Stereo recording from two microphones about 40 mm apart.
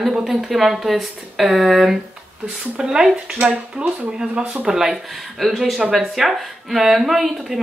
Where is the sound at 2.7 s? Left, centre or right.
Centre.